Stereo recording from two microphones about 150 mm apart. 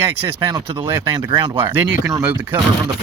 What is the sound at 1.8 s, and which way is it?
Speech, 15° right (ahead or behind).